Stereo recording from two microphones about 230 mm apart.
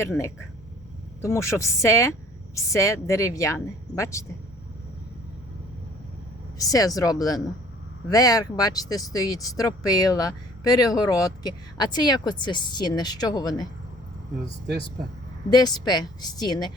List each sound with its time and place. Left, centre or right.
0.0 s speech: centre
6.6 s speech: centre
15.4 s speech: centre